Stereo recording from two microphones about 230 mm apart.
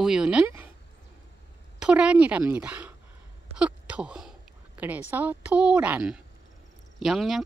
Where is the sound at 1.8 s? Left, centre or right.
Centre.